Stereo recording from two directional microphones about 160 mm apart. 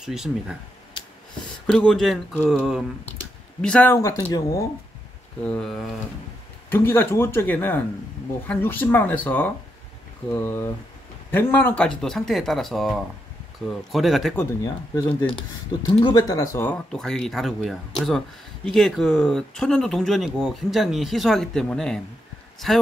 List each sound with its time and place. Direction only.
0.0 s speech: 5° right (ahead or behind)
1.7 s speech: 5° left (ahead or behind)
3.6 s speech: 10° left (ahead or behind)
4.2 s speech: 20° left (ahead or behind)
5.4 s speech: 5° left (ahead or behind)
6.7 s speech: 15° left (ahead or behind)
14.6 s speech: 25° left (ahead or behind); by 22.8 s centre (ahead or behind)